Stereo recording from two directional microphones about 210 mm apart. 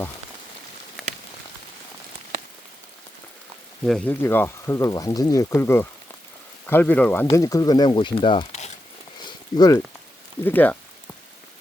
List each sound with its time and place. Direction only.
1.0 s a sound: centre (ahead or behind)
3.8 s speech: 5° left (ahead or behind); by 8.7 s 25° left (ahead or behind)
9.6 s speech: 15° left (ahead or behind)